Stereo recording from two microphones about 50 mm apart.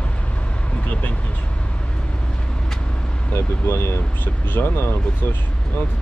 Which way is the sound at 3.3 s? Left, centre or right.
Left.